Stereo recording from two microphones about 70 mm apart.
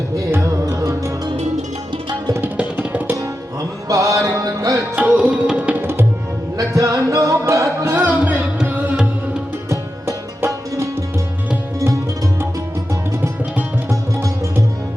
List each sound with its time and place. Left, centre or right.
0.7 s music: right
2.6 s music: right
3.8 s music: right
4.9 s tabla: centre
5.8 s tabla: right
6.6 s music: right
7.9 s music: right
9.6 s music: right